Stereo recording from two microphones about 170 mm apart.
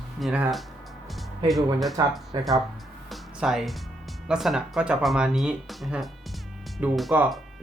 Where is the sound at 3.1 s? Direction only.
Centre (ahead or behind).